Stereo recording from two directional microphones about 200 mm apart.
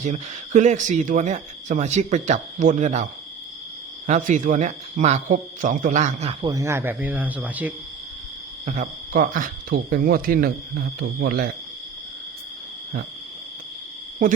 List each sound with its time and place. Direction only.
0.0 s speech: 35° right (ahead or behind)
6.5 s speech: 15° right (ahead or behind)
8.6 s speech: 40° right (ahead or behind)